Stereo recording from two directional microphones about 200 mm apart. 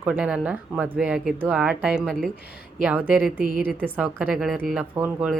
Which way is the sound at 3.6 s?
5° right (ahead or behind).